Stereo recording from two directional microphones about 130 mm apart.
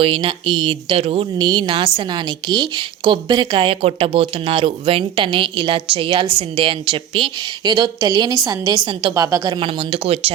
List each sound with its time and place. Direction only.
0.0 s speech: 45° right (ahead or behind); by 9.6 s 25° right (ahead or behind)
9.6 s speech: 40° right (ahead or behind)